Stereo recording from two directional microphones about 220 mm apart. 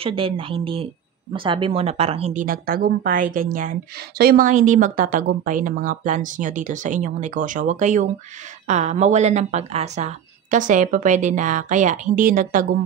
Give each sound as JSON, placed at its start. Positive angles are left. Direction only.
{"t": 0.0, "sound": "speech", "side_deg": -25}